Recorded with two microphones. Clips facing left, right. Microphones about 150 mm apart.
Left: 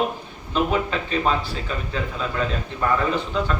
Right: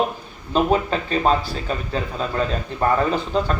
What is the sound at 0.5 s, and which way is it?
A man's voice, 35° right (ahead or behind).